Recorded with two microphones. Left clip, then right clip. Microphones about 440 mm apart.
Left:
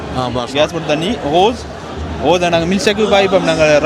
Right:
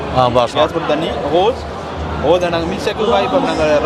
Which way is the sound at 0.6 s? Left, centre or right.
Left.